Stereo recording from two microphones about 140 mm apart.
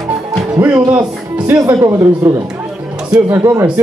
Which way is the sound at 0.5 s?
15° right (ahead or behind).